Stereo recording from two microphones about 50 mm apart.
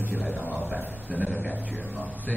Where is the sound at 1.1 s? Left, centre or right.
Right.